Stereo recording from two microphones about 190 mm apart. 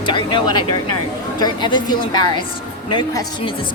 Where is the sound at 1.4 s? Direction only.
25° left (ahead or behind).